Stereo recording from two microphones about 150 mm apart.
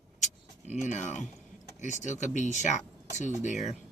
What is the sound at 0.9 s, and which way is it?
Speech, 55° left (ahead or behind).